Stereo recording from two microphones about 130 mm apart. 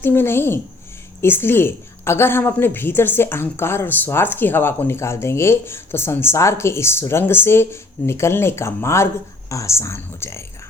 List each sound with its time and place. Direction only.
0.0 s a woman's voice: 15° left (ahead or behind)